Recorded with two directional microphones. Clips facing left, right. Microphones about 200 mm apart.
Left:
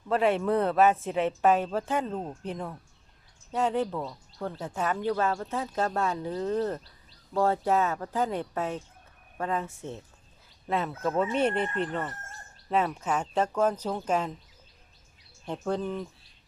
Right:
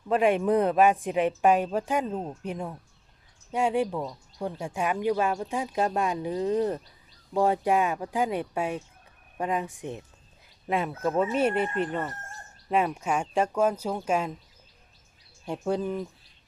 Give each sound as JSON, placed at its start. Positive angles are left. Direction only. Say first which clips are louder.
{"t": 0.1, "sound": "speech", "louder": "right 2 dB", "side_deg": -15}
{"t": 15.4, "sound": "speech", "louder": "right 2 dB", "side_deg": -10}